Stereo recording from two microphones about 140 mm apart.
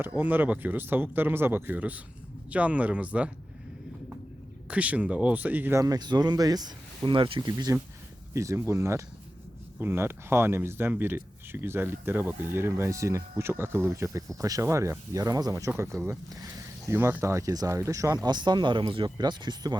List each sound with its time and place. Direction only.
0.0 s speech: 15° right (ahead or behind)
4.7 s speech: 10° right (ahead or behind)
5.8 s speech: 30° right (ahead or behind)